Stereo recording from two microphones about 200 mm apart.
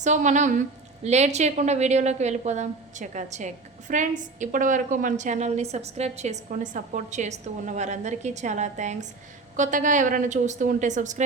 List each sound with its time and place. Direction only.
0.0 s a woman's voice: 35° right (ahead or behind)